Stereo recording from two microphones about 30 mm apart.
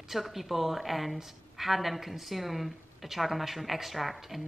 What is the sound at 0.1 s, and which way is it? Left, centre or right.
A woman's voice, centre.